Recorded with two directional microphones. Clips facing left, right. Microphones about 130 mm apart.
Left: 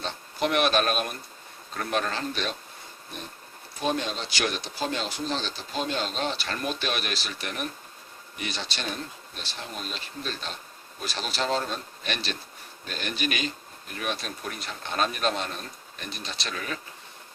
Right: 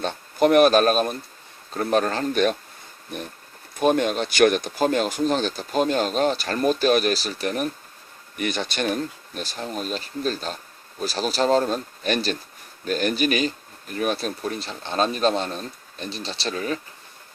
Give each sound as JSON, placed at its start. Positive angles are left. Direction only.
{"t": 0.0, "sound": "speech", "side_deg": -45}
{"t": 3.8, "sound": "speech", "side_deg": -55}
{"t": 8.4, "sound": "speech", "side_deg": -50}